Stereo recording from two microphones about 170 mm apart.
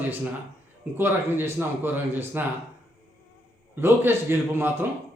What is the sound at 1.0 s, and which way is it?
A man's voice, 15° right (ahead or behind).